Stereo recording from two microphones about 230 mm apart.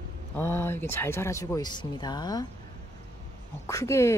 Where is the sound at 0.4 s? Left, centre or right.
Centre.